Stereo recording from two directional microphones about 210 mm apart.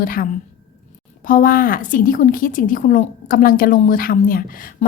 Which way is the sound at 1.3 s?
40° left (ahead or behind).